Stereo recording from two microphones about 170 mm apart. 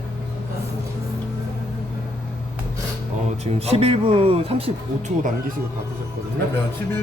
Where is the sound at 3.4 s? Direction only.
35° right (ahead or behind).